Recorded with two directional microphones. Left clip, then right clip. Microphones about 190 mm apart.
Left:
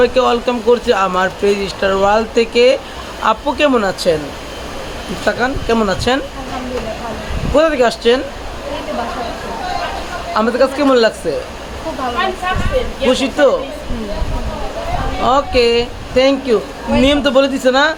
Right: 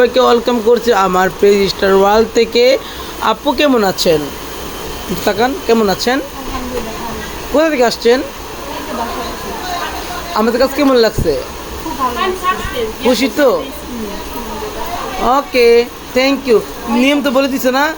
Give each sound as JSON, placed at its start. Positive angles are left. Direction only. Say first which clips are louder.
{"t": 0.0, "sound": "speech", "louder": "right 2 dB", "side_deg": -30}
{"t": 5.2, "sound": "speech", "louder": "right 2 dB", "side_deg": -15}
{"t": 7.5, "sound": "speech", "louder": "even", "side_deg": -10}
{"t": 10.3, "sound": "speech", "louder": "right 1 dB", "side_deg": -15}
{"t": 13.1, "sound": "speech", "louder": "even", "side_deg": -15}
{"t": 15.2, "sound": "speech", "louder": "right 2 dB", "side_deg": -10}